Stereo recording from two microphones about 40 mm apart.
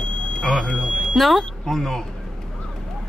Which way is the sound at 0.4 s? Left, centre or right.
Centre.